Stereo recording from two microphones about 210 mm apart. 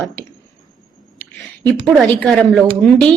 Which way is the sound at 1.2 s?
5° left (ahead or behind).